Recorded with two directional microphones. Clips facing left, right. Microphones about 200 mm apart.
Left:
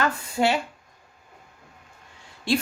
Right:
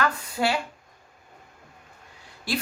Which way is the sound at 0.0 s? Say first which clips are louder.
Left 2 dB; 25° left (ahead or behind).